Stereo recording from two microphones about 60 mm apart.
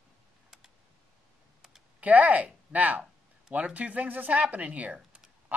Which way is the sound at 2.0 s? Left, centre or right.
Right.